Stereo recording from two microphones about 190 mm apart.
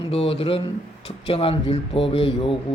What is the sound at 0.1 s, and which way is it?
A man's voice, 30° left (ahead or behind).